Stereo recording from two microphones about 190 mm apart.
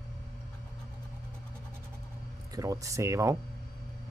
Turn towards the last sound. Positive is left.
turn(degrees=-15)  # may be behind; listen again after turning